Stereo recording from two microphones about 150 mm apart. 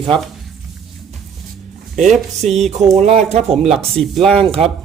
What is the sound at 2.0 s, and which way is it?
Speech, 50° right (ahead or behind).